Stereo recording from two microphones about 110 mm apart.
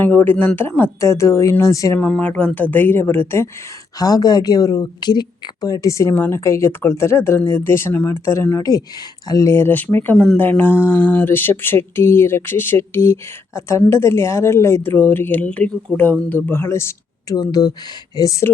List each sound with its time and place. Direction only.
0.0 s a woman's voice: 15° left (ahead or behind)
2.0 s speech: 10° left (ahead or behind)
3.9 s a woman's voice: 35° left (ahead or behind)
17.3 s a woman's voice: 35° left (ahead or behind)